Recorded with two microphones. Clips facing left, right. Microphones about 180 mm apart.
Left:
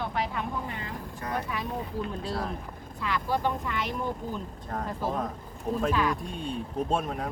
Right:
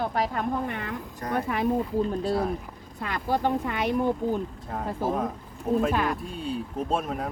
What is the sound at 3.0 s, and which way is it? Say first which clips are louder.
Speech: right 2 dB; 50° right (ahead or behind).